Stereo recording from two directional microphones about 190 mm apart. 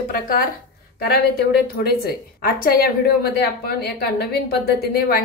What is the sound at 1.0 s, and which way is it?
A woman's voice, 55° left (ahead or behind).